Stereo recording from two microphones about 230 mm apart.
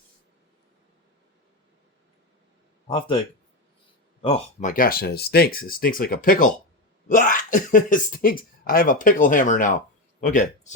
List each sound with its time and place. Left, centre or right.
2.8 s speech: left
4.2 s speech: left